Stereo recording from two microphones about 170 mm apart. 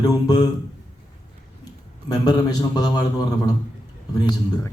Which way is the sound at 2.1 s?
25° left (ahead or behind).